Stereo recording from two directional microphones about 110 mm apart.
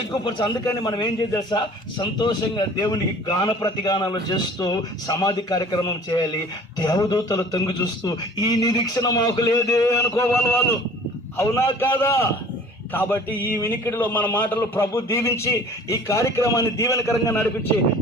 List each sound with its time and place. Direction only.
0.3 s a man's voice: 45° left (ahead or behind); by 17.7 s 20° left (ahead or behind)